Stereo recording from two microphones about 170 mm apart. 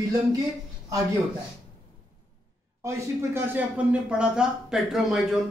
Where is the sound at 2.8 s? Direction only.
15° right (ahead or behind).